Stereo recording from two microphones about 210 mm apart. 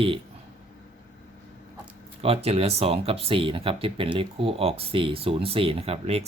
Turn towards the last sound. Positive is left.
turn(degrees=-30)  # may be behind; listen again after turning